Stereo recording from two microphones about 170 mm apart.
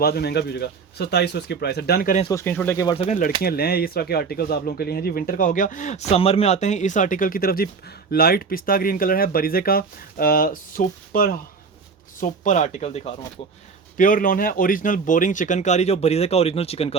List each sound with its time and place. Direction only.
0.0 s speech: 70° left (ahead or behind)
2.3 s speech: 15° left (ahead or behind)
2.8 s speech: 35° left (ahead or behind)
3.4 s speech: 65° left (ahead or behind); by 13.0 s 40° left (ahead or behind)
13.9 s speech: 50° left (ahead or behind); by 17.0 s 35° left (ahead or behind)